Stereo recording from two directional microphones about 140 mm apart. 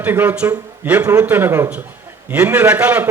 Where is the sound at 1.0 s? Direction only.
25° right (ahead or behind).